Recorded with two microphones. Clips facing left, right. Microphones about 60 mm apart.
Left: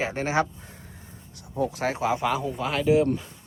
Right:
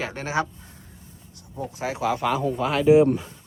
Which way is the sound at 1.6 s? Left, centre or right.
Left.